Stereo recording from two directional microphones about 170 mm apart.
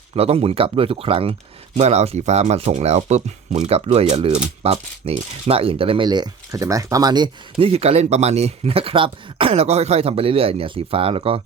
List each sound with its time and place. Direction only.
0.2 s speech: 35° right (ahead or behind)
7.6 s speech: 35° right (ahead or behind)